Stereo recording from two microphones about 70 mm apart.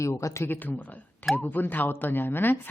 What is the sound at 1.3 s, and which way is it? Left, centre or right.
Speech, left.